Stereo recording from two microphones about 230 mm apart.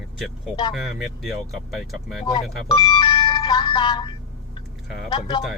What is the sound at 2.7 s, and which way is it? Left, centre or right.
Speech, centre.